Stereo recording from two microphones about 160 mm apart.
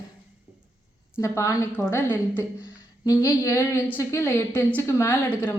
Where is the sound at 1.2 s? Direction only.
20° left (ahead or behind).